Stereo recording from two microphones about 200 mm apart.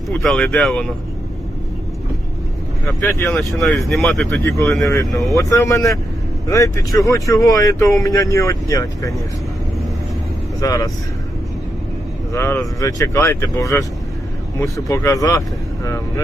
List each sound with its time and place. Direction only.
0.1 s speech: 5° left (ahead or behind)
3.0 s speech: 10° left (ahead or behind)
4.4 s speech: 15° left (ahead or behind)
10.6 s speech: 15° left (ahead or behind)
12.3 s speech: 10° left (ahead or behind)